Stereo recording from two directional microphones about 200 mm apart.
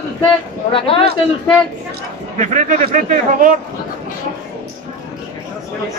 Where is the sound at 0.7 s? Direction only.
25° left (ahead or behind).